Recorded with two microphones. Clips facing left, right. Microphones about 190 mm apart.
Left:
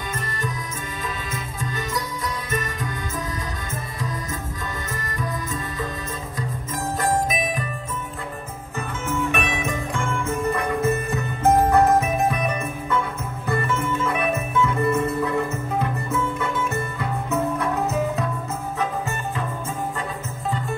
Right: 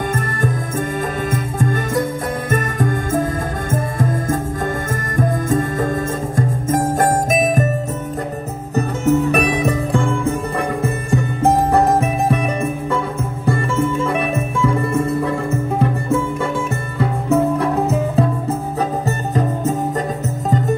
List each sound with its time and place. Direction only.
1.3 s music: 50° right (ahead or behind)
8.7 s music: 40° right (ahead or behind)